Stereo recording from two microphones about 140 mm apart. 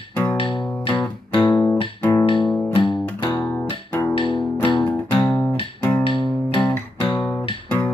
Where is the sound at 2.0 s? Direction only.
20° left (ahead or behind).